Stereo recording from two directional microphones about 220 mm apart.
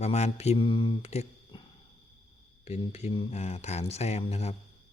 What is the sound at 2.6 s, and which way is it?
Speech, 30° left (ahead or behind).